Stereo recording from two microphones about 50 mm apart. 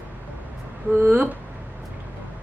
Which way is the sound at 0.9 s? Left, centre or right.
Right.